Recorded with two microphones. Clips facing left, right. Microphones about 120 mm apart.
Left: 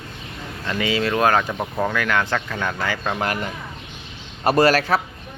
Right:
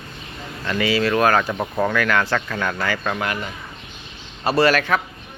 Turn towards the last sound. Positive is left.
turn(degrees=35)  # may be behind; listen again after turning